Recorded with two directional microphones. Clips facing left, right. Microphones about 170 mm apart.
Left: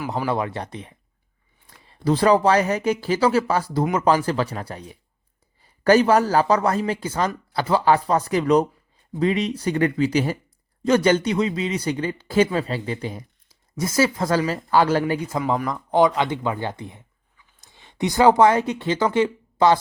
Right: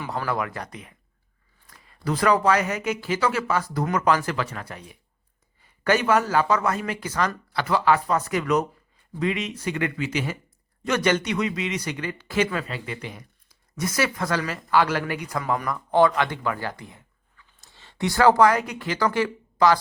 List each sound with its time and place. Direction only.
0.1 s speech: 20° left (ahead or behind)